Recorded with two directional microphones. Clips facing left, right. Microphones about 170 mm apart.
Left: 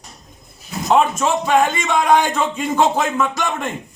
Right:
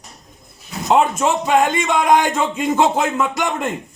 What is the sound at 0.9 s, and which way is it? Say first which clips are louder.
A man's voice: even; 20° right (ahead or behind).